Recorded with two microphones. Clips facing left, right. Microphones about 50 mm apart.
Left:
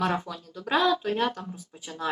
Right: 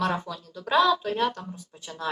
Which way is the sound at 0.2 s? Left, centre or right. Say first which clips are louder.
Right 1 dB; centre.